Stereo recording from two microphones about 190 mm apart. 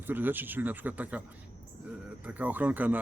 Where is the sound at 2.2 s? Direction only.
10° right (ahead or behind).